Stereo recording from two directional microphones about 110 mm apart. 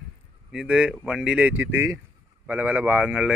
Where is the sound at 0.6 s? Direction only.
10° right (ahead or behind).